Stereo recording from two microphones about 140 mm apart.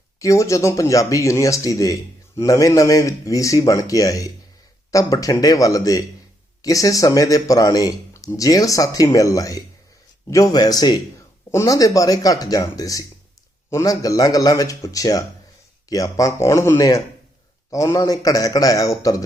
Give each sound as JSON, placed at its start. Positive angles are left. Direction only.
{"t": 0.2, "sound": "speech", "side_deg": 20}